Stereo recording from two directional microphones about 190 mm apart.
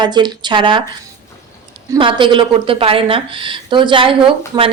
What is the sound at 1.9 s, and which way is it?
A woman's voice, 25° right (ahead or behind).